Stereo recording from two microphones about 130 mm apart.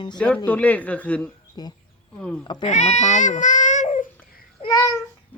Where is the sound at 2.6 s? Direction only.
65° left (ahead or behind).